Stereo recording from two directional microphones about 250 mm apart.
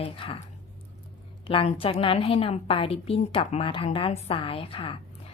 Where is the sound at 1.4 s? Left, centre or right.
Left.